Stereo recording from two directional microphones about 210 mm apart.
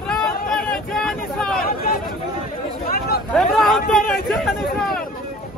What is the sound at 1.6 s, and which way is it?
Speech, 45° left (ahead or behind).